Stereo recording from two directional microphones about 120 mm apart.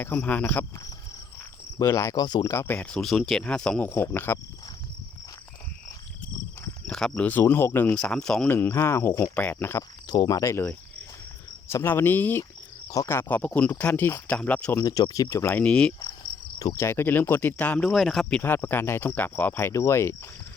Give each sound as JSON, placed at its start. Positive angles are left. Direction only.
{"t": 0.0, "sound": "speech", "side_deg": 15}
{"t": 1.8, "sound": "speech", "side_deg": 25}
{"t": 2.5, "sound": "speech", "side_deg": 20}
{"t": 6.8, "sound": "cricket", "side_deg": 5}
{"t": 7.2, "sound": "speech", "side_deg": 15}
{"t": 7.9, "sound": "speech", "side_deg": 5}
{"t": 8.4, "sound": "speech", "side_deg": 20}
{"t": 10.1, "sound": "speech", "side_deg": 35}
{"t": 11.7, "sound": "speech", "side_deg": 20}
{"t": 14.8, "sound": "speech", "side_deg": 35}
{"t": 16.6, "sound": "speech", "side_deg": 25}
{"t": 17.9, "sound": "speech", "side_deg": 0}
{"t": 18.4, "sound": "speech", "side_deg": 15}